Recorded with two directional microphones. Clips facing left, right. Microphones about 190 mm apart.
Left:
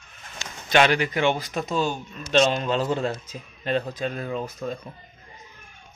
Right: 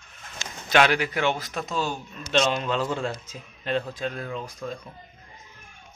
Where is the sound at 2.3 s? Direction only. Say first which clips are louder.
Left 3 dB; 35° left (ahead or behind).